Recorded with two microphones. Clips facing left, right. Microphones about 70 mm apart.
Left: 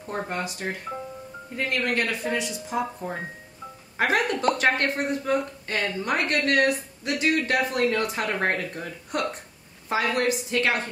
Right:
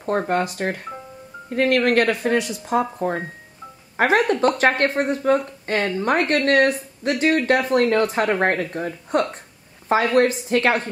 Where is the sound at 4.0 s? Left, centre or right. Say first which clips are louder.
Right 6 dB; right.